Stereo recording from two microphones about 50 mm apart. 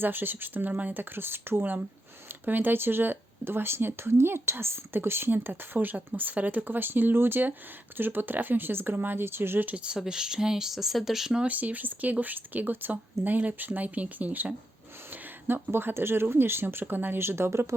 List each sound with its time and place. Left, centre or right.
0.0 s speech: right
9.6 s speech: right
11.4 s speech: right
15.4 s speech: right